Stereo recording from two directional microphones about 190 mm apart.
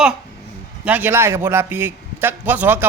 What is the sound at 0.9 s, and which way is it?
A man's voice, 10° right (ahead or behind).